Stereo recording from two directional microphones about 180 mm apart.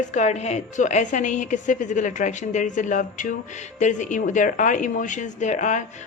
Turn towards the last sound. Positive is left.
turn(degrees=45)  # may be behind; listen again after turning